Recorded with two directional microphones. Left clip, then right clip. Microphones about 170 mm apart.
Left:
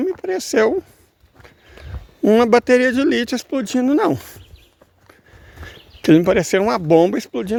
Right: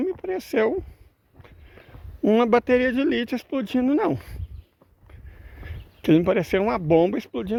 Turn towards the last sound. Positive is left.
turn(degrees=45)  # may be behind; listen again after turning